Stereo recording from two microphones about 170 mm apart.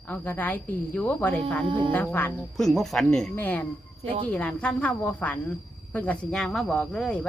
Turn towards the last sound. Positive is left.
turn(degrees=5)  # may be behind; listen again after turning